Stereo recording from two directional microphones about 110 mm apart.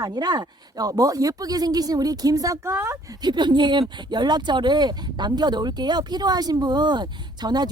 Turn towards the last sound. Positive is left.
turn(degrees=-40)  # may be behind; listen again after turning